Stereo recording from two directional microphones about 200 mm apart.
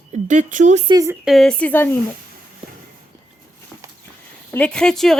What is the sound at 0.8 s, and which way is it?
Speech, 15° right (ahead or behind).